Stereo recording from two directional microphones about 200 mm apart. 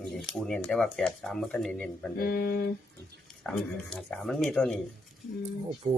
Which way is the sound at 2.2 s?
50° left (ahead or behind).